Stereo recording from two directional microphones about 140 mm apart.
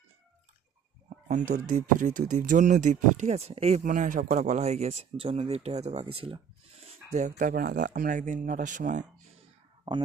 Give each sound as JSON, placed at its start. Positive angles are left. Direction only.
{"t": 1.3, "sound": "speech", "side_deg": -65}
{"t": 3.8, "sound": "speech", "side_deg": -70}
{"t": 7.3, "sound": "speech", "side_deg": -90}